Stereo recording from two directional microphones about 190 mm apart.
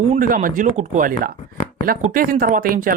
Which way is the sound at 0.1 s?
45° right (ahead or behind).